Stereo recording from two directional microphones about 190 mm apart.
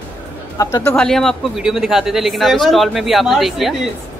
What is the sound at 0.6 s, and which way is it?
Bird, 20° left (ahead or behind).